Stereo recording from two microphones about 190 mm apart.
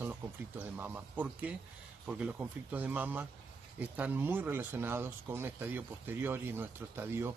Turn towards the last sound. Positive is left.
turn(degrees=-10)  # may be behind; listen again after turning